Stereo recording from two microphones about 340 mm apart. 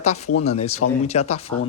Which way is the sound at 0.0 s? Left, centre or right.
Centre.